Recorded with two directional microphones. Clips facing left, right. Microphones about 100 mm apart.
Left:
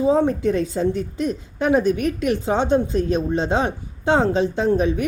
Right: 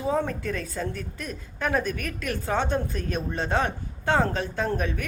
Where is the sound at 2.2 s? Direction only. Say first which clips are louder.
Left 5 dB; 20° left (ahead or behind).